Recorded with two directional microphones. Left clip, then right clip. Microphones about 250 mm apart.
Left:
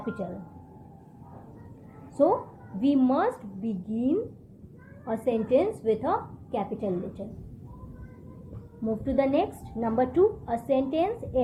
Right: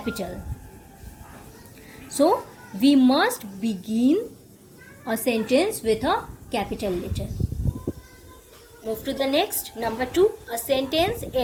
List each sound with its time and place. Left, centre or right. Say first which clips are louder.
0.0 s speech: right 4 dB; right
2.2 s a woman's voice: right 3 dB; right
9.0 s a woman's voice: right 2 dB; right